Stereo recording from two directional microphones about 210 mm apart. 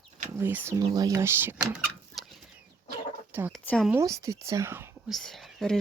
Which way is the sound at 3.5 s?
Centre (ahead or behind).